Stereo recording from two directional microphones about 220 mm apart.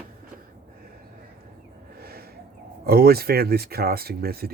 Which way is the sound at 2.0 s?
45° right (ahead or behind).